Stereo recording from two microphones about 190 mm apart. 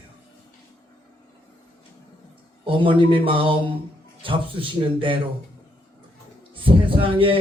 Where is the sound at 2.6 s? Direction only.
25° right (ahead or behind).